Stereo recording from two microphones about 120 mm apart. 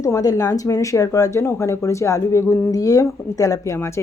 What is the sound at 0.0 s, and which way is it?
Speech, 30° left (ahead or behind).